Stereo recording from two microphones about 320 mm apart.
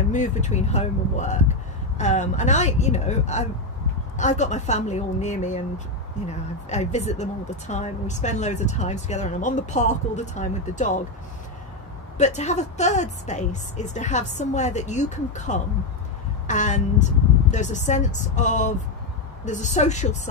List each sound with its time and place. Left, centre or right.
0.1 s speech: left
12.2 s speech: left